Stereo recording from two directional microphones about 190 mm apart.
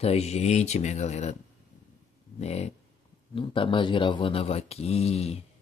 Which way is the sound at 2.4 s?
35° left (ahead or behind).